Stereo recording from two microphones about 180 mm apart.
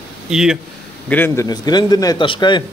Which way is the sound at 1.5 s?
20° left (ahead or behind).